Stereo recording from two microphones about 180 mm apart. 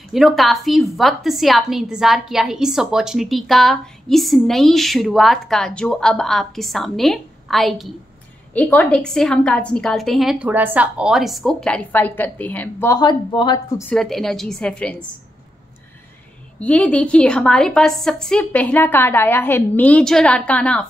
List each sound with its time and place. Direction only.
0.1 s a woman's voice: centre (ahead or behind)
12.9 s speech: 25° left (ahead or behind)
13.9 s a woman's voice: centre (ahead or behind)
16.5 s a woman's voice: 5° left (ahead or behind)